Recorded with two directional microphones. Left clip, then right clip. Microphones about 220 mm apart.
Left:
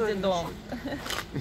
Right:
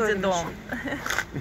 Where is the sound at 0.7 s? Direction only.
Centre (ahead or behind).